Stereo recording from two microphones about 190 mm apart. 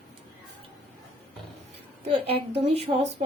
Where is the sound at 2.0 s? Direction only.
30° right (ahead or behind).